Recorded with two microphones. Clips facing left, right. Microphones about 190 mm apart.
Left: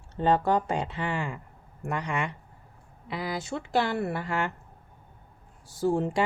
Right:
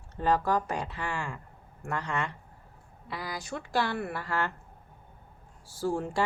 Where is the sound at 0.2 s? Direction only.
25° left (ahead or behind).